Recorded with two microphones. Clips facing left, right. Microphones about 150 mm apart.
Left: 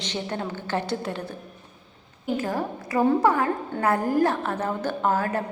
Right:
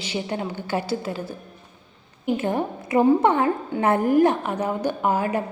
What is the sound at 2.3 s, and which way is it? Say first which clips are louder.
A woman's voice: right 2 dB; 25° right (ahead or behind).